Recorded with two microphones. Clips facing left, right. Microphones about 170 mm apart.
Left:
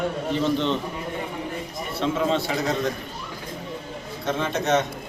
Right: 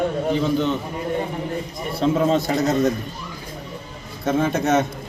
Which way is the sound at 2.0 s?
40° right (ahead or behind).